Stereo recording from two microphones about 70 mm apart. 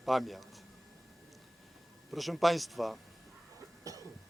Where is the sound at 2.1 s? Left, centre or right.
Centre.